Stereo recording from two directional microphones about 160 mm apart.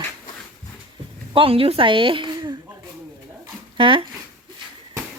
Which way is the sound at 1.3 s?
35° right (ahead or behind).